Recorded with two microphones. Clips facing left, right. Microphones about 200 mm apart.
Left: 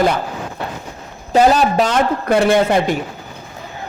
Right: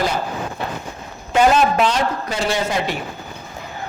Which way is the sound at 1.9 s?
55° left (ahead or behind).